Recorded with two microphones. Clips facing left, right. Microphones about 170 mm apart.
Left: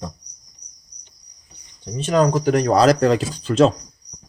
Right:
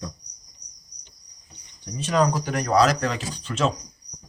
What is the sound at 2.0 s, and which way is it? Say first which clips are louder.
A man's voice: left 5 dB; 30° left (ahead or behind).